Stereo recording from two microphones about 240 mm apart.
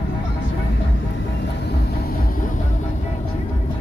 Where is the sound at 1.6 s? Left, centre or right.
Left.